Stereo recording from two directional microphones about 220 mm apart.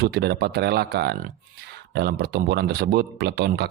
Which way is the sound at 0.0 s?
50° right (ahead or behind).